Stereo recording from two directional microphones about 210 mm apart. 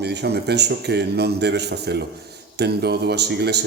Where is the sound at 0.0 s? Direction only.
50° right (ahead or behind).